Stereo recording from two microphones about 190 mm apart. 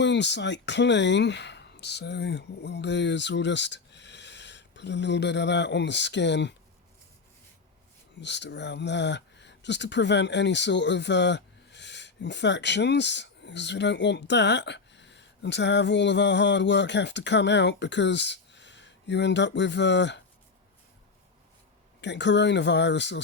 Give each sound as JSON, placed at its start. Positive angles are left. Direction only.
{"t": 0.0, "sound": "speech", "side_deg": 65}
{"t": 8.2, "sound": "speech", "side_deg": 65}
{"t": 22.0, "sound": "speech", "side_deg": 65}